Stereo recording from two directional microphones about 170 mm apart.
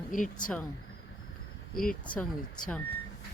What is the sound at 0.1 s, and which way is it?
Speech, 50° left (ahead or behind).